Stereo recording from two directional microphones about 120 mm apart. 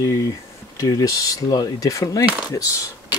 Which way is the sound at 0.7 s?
30° left (ahead or behind).